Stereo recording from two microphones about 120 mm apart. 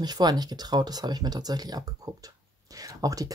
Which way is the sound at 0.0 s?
35° right (ahead or behind).